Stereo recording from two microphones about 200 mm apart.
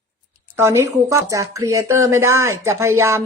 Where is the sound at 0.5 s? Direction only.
10° right (ahead or behind).